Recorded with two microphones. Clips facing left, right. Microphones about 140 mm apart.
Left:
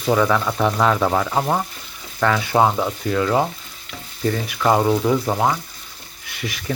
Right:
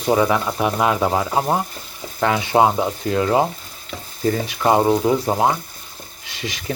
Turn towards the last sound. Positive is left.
turn(degrees=-25)  # may be behind; listen again after turning